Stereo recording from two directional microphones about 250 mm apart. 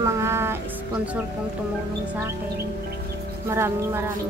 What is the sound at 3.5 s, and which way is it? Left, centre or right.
Speech, centre.